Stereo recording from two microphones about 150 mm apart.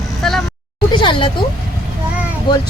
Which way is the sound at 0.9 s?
30° left (ahead or behind).